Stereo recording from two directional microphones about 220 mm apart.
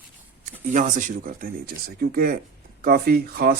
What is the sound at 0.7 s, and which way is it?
Speech, 35° right (ahead or behind).